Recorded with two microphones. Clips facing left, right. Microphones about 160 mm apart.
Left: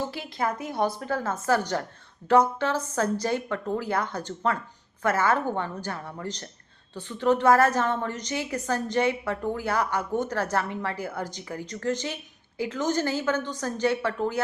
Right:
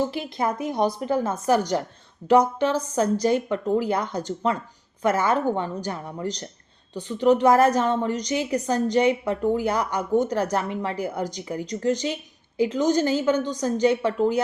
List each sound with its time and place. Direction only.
0.1 s a woman's voice: 20° right (ahead or behind)